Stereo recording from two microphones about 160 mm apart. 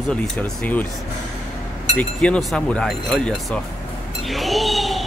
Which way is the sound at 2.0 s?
5° left (ahead or behind).